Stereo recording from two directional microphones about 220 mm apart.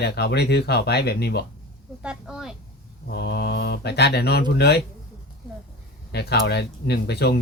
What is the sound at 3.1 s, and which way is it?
Speech, 50° left (ahead or behind).